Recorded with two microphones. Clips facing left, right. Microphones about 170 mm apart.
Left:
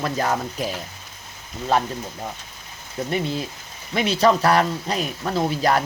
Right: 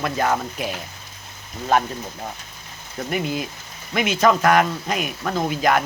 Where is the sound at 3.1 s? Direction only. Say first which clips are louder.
Right 1 dB; 30° left (ahead or behind).